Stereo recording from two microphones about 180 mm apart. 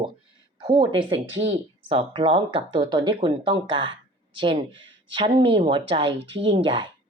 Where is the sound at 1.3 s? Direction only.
90° right.